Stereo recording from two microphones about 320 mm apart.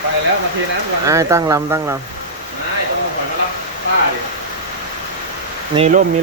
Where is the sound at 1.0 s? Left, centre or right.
Centre.